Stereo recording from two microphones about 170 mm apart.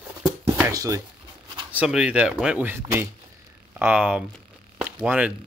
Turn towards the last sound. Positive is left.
turn(degrees=-10)  # may be behind; listen again after turning